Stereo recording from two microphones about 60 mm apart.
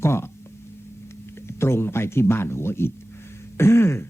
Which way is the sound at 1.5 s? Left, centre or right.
Left.